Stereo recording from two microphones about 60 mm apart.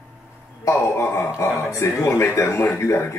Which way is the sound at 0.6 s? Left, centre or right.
Left.